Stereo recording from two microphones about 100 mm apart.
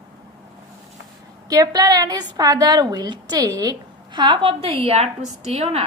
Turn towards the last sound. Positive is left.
turn(degrees=-90)